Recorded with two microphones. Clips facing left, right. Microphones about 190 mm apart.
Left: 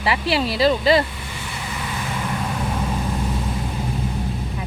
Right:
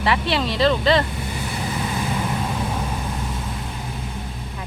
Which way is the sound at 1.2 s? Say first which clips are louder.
Right 5 dB; 40° right (ahead or behind).